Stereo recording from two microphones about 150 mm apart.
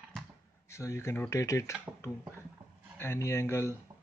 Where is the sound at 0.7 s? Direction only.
20° left (ahead or behind).